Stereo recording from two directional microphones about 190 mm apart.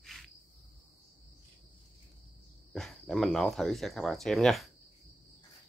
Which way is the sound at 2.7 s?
Centre (ahead or behind).